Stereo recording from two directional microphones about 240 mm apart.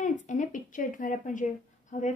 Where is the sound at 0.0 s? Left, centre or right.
Left.